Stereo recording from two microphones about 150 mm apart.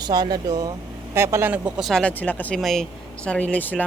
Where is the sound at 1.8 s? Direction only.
5° left (ahead or behind).